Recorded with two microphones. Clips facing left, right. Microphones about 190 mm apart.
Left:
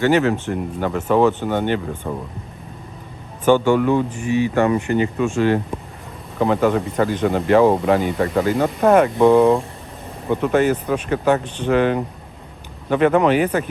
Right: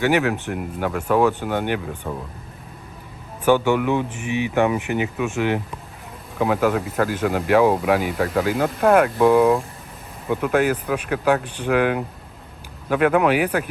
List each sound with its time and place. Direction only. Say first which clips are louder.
0.3 s speech: left 3 dB; 15° right (ahead or behind)
2.0 s speech: left 2 dB; centre (ahead or behind)
3.5 s speech: left 3 dB; 15° right (ahead or behind)
6.4 s speech: left 2 dB; 5° right (ahead or behind)